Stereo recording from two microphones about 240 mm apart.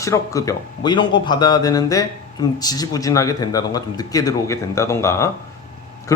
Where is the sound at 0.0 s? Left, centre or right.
Centre.